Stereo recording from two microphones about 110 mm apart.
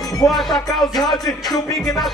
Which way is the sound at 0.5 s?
35° left (ahead or behind).